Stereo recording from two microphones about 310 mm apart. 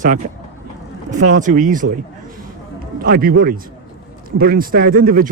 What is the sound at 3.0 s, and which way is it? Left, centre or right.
Speech, right.